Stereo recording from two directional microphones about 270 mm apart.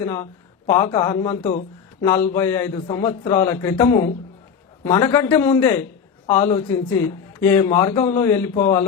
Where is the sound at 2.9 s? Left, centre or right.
Centre.